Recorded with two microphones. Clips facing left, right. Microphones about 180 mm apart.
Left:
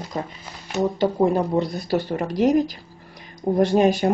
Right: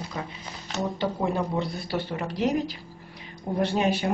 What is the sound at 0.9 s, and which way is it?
Speech, 45° left (ahead or behind).